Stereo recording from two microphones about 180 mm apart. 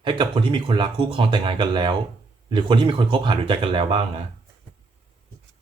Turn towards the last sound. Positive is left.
turn(degrees=-30)  # may be behind; listen again after turning